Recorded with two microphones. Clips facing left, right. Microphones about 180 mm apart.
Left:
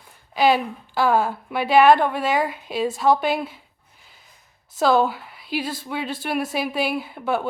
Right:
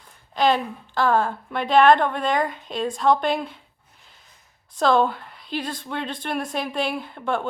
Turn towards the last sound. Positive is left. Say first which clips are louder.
# left 2 dB
turn(degrees=5)  # may be behind; listen again after turning